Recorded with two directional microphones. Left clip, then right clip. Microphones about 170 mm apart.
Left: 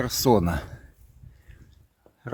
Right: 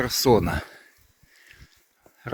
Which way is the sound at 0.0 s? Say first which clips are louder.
Right 2 dB; 30° left (ahead or behind).